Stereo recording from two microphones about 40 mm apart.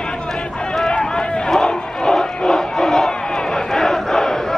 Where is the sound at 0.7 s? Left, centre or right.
Centre.